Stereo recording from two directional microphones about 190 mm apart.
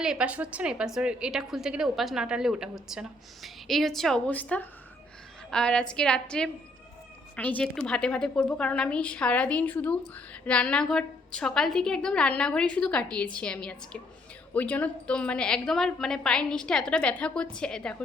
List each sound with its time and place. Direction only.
0.0 s a woman's voice: 5° right (ahead or behind)